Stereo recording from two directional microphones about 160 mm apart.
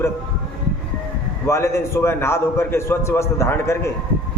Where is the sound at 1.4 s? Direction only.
15° left (ahead or behind).